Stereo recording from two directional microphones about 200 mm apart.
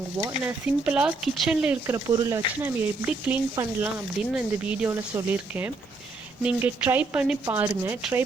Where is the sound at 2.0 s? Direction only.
20° right (ahead or behind).